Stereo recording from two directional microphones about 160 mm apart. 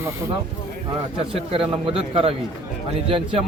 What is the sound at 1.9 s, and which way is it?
A man's voice, 35° right (ahead or behind).